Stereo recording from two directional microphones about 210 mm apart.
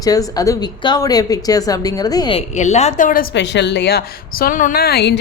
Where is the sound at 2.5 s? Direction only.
35° left (ahead or behind).